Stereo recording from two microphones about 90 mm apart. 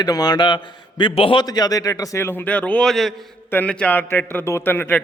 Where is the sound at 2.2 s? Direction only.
20° left (ahead or behind).